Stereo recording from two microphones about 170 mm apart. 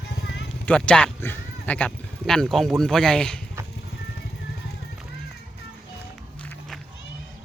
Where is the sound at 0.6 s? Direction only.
5° left (ahead or behind).